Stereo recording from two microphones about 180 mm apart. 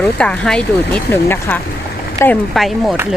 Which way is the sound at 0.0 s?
10° left (ahead or behind).